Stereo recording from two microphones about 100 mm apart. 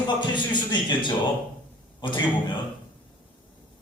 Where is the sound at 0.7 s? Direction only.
50° left (ahead or behind).